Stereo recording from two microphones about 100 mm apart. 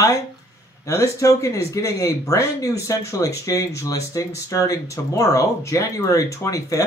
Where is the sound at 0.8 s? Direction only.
30° left (ahead or behind).